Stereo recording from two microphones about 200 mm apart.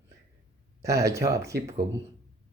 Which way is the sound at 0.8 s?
15° right (ahead or behind).